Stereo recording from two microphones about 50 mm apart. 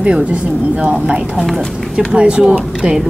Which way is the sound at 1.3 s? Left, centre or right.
Centre.